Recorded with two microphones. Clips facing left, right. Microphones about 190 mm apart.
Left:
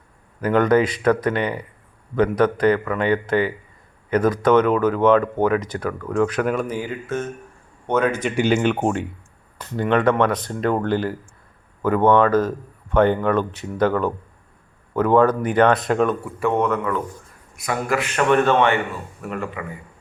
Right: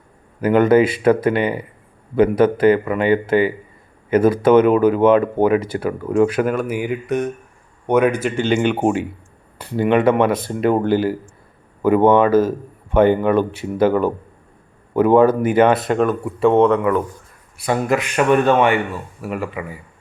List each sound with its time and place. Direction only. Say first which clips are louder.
0.7 s a man's voice: right 4 dB; 5° right (ahead or behind)
5.9 s speech: right 5 dB; 20° right (ahead or behind)
6.2 s speech: right 3 dB; 5° right (ahead or behind)
6.7 s a man's voice: right 5 dB; 15° right (ahead or behind)
8.4 s a man's voice: even; 5° left (ahead or behind)
16.2 s a man's voice: right 7 dB; 25° right (ahead or behind); by 19.6 s 10° right (ahead or behind)